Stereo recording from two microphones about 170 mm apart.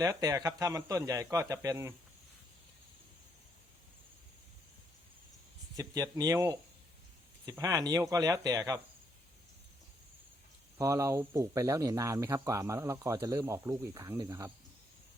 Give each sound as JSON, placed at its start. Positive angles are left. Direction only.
{"t": 0.0, "sound": "speech", "side_deg": -20}
{"t": 5.7, "sound": "speech", "side_deg": -20}
{"t": 10.8, "sound": "speech", "side_deg": -20}